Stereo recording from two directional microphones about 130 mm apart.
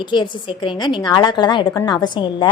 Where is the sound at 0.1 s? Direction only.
35° left (ahead or behind).